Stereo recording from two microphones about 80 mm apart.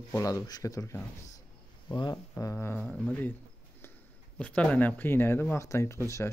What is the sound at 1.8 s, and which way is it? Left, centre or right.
Speech, left.